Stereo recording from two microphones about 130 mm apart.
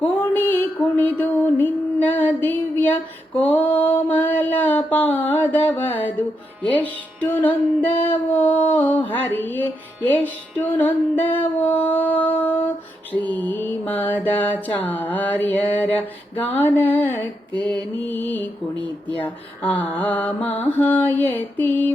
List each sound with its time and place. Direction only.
0.2 s music: 15° left (ahead or behind)
3.5 s a sound: 15° left (ahead or behind)
6.6 s mantra: 15° left (ahead or behind)
9.0 s music: 15° left (ahead or behind)
10.2 s mantra: 15° left (ahead or behind)
17.5 s mantra: 35° right (ahead or behind)
18.0 s mantra: 15° left (ahead or behind)
19.6 s mantra: 15° left (ahead or behind)